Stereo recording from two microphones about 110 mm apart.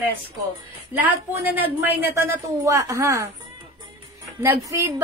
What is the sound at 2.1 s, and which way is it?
A woman's voice, 25° right (ahead or behind).